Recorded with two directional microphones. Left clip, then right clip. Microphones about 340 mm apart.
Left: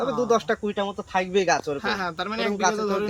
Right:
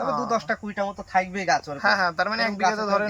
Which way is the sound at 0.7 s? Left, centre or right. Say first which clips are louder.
Right 1 dB; centre.